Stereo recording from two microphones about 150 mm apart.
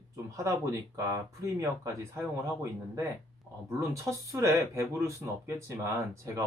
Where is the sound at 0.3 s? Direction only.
20° right (ahead or behind).